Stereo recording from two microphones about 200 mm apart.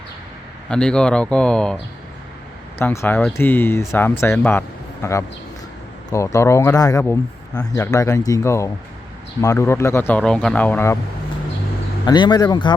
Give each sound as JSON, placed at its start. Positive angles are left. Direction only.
{"t": 0.7, "sound": "speech", "side_deg": 5}
{"t": 12.0, "sound": "speech", "side_deg": 20}